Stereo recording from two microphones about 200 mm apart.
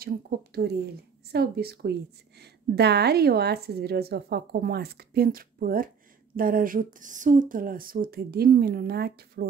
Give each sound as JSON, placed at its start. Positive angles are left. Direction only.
{"t": 0.0, "sound": "a woman's voice", "side_deg": -50}